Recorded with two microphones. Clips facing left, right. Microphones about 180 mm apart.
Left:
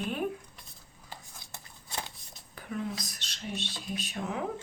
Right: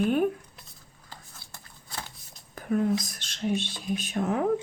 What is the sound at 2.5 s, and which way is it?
Whispering, 45° right (ahead or behind).